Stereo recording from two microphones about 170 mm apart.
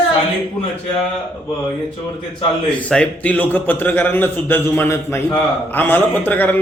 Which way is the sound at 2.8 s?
5° left (ahead or behind).